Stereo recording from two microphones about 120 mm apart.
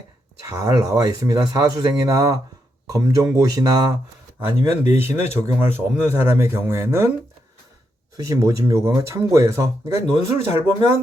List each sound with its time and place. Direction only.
0.4 s speech: 30° right (ahead or behind)
4.9 s speech: 20° right (ahead or behind)
8.1 s speech: 25° right (ahead or behind)